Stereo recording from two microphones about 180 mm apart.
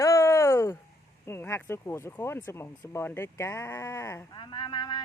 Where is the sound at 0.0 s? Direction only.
15° left (ahead or behind).